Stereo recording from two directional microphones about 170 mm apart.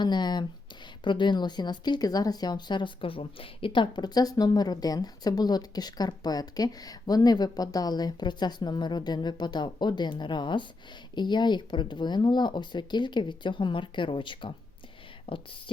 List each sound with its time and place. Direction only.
0.0 s speech: 25° left (ahead or behind)